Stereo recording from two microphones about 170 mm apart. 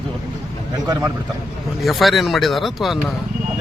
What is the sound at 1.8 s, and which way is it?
A man's voice, centre (ahead or behind).